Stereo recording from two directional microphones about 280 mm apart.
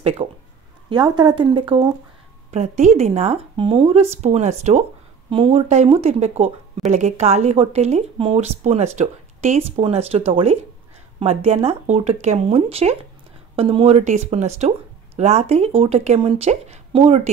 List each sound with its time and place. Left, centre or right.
0.2 s speech: centre